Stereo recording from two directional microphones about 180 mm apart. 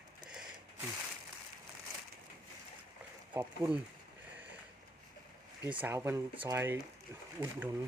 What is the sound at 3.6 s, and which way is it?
Speech, 20° right (ahead or behind).